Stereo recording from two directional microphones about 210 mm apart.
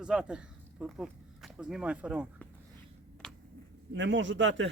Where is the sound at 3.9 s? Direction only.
60° right (ahead or behind).